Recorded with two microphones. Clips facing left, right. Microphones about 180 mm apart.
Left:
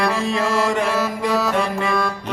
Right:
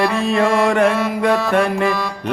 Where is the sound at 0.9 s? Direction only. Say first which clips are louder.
Right 4 dB; centre (ahead or behind).